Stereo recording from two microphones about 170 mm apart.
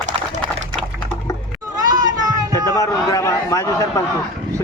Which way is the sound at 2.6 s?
20° left (ahead or behind).